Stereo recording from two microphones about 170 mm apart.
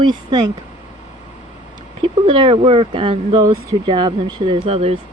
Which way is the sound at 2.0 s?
30° right (ahead or behind).